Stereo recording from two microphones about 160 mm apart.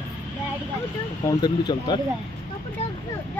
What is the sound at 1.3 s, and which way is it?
Speech, 25° left (ahead or behind).